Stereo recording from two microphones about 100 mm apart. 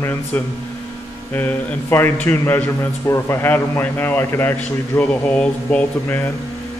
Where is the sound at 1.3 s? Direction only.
20° left (ahead or behind).